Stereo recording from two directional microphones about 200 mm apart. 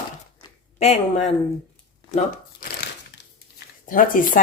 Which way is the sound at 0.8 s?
30° left (ahead or behind).